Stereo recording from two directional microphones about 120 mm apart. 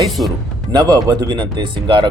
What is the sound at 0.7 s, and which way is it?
Speech, 35° right (ahead or behind).